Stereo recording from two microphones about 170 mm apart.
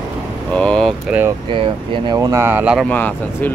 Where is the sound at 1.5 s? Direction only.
30° right (ahead or behind); by 2.8 s 10° right (ahead or behind).